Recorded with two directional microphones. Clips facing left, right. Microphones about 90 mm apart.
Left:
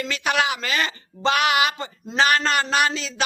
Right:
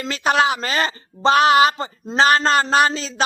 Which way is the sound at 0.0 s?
35° right (ahead or behind).